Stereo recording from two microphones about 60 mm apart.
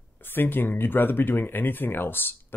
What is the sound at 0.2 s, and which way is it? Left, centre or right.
Speech, left.